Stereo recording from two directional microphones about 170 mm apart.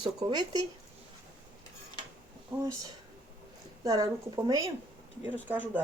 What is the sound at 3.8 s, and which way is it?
Speech, 20° right (ahead or behind).